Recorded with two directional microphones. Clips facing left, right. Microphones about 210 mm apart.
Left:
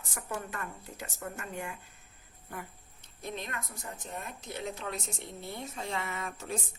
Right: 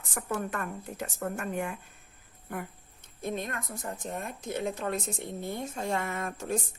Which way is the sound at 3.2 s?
50° right (ahead or behind).